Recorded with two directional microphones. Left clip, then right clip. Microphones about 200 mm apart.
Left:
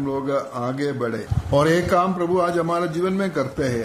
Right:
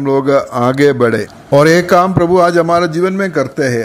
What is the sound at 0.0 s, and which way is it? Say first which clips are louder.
Speech: right 12 dB; 35° right (ahead or behind).